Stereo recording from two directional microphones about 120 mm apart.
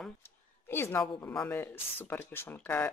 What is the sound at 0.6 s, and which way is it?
A woman's voice, 20° left (ahead or behind).